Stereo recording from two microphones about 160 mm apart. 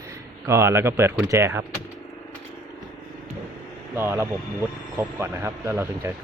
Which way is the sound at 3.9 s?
15° right (ahead or behind).